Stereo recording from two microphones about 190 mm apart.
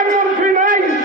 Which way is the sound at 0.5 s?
45° right (ahead or behind).